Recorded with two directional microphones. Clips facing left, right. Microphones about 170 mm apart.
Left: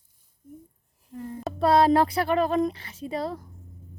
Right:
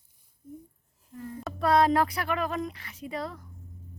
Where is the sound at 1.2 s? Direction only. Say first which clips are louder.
Left 6 dB; 25° left (ahead or behind).